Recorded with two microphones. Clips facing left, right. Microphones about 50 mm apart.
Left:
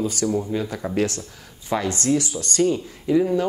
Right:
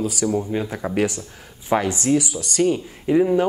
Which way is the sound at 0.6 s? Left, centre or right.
Right.